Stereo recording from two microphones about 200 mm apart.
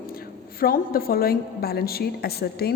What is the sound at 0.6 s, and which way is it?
A woman's voice, 45° left (ahead or behind).